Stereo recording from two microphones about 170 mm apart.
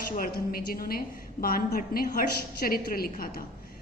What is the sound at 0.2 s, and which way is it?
A woman's voice, 60° left (ahead or behind).